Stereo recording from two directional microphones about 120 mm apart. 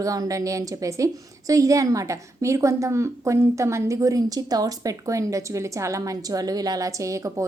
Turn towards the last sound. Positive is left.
turn(degrees=-25)  # may be behind; listen again after turning